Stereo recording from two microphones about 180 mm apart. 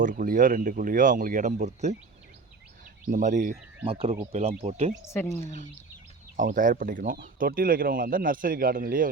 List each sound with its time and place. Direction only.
0.0 s speech: 45° right (ahead or behind)
3.1 s speech: 45° right (ahead or behind)
3.8 s speech: 30° right (ahead or behind)
5.1 s a woman's voice: 15° left (ahead or behind)
5.4 s speech: 45° right (ahead or behind)